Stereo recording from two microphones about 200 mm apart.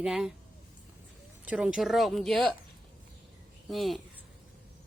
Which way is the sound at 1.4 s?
5° right (ahead or behind).